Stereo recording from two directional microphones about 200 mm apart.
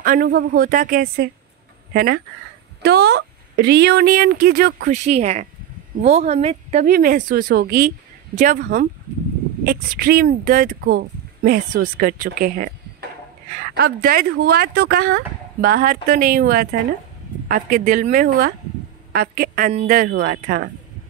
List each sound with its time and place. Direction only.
0.0 s speech: 45° right (ahead or behind)
2.8 s speech: 55° right (ahead or behind)
4.9 s speech: 35° right (ahead or behind)
6.9 s speech: 45° right (ahead or behind)
19.7 s speech: 30° right (ahead or behind)
20.0 s speech: 55° right (ahead or behind)